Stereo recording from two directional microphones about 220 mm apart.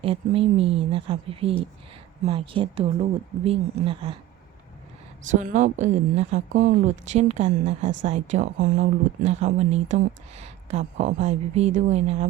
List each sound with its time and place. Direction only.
0.0 s speech: 25° right (ahead or behind)
5.3 s speech: 35° right (ahead or behind)